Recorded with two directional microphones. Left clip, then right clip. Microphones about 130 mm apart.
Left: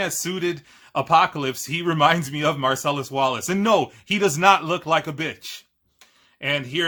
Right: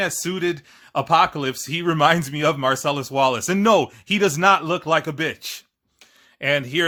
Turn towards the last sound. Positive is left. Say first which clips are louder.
# right 3 dB
turn(degrees=-40)  # may be behind; listen again after turning